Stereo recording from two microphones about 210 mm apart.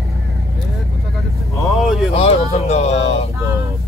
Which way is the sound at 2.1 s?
30° left (ahead or behind).